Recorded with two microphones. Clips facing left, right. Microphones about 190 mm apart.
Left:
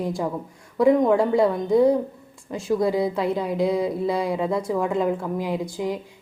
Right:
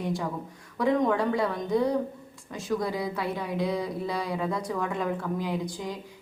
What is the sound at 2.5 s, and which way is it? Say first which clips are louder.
A woman's voice: left 7 dB; 25° left (ahead or behind).